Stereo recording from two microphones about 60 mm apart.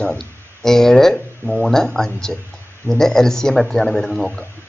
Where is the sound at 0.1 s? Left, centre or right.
Centre.